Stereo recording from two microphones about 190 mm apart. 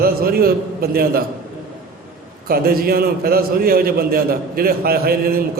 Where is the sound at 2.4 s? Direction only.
50° right (ahead or behind).